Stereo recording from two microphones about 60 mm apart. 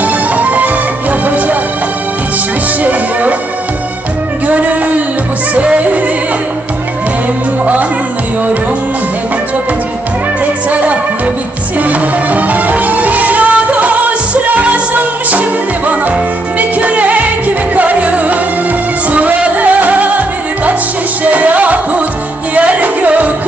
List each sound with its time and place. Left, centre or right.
0.0 s music: right
2.8 s music: right
4.5 s a sound: right
5.5 s music: right
10.4 s music: right